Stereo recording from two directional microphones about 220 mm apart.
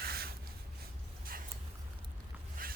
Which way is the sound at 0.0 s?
45° right (ahead or behind).